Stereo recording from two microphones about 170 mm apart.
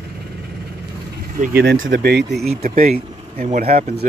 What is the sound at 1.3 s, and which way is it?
Speech, 65° right (ahead or behind).